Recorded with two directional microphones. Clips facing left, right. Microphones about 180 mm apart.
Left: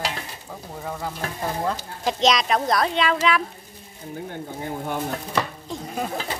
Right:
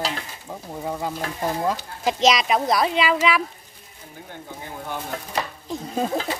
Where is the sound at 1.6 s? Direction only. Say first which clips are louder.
Right 1 dB; 5° right (ahead or behind).